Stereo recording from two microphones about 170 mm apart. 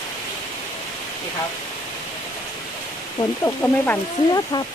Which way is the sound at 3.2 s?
15° left (ahead or behind).